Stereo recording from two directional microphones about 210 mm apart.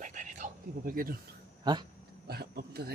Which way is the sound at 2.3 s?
50° right (ahead or behind).